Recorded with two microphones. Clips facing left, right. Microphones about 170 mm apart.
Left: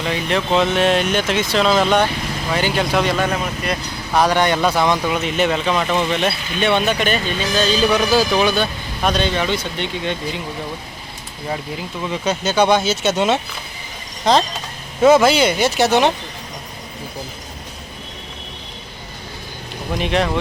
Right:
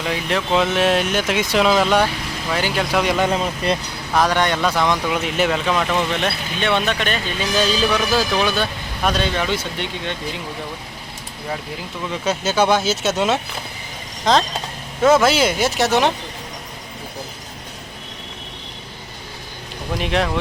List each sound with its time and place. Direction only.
0.0 s speech: 5° right (ahead or behind)
3.1 s speech: 20° right (ahead or behind)
4.1 s speech: centre (ahead or behind)
7.5 s a man's voice: 10° right (ahead or behind)
12.2 s speech: 5° right (ahead or behind)
20.0 s speech: centre (ahead or behind)